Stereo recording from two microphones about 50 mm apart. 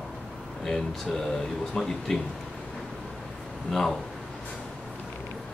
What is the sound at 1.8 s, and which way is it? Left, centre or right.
Speech, centre.